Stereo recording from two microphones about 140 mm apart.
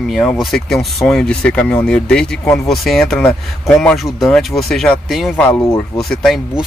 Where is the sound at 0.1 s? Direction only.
Centre (ahead or behind).